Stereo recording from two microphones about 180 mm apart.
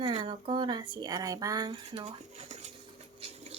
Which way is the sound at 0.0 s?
30° right (ahead or behind).